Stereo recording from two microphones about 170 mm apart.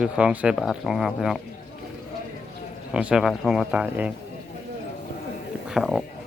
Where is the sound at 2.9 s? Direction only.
5° right (ahead or behind).